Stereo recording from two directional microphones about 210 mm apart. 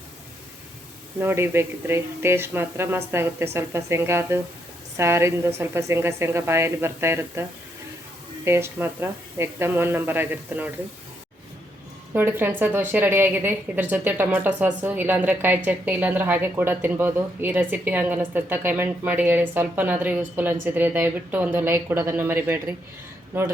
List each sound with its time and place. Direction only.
1.2 s a woman's voice: 10° right (ahead or behind)
8.4 s a woman's voice: 10° right (ahead or behind)
12.1 s a woman's voice: 10° right (ahead or behind)